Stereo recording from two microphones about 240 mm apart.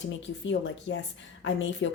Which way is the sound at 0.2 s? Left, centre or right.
Left.